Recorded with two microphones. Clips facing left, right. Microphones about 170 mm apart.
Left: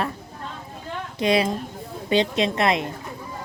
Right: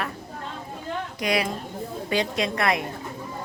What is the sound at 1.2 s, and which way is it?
A woman's voice, 25° left (ahead or behind).